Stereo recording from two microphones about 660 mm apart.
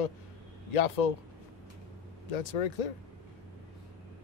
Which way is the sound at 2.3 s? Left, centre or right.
Left.